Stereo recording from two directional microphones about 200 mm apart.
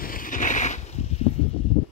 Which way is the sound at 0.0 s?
45° left (ahead or behind).